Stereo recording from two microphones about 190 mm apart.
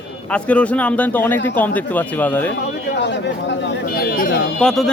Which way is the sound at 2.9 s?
65° left (ahead or behind).